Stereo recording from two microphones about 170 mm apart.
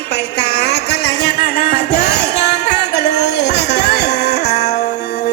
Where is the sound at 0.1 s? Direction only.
80° left.